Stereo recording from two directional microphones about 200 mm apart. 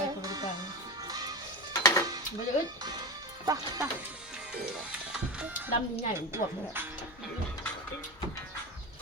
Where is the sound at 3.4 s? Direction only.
15° right (ahead or behind).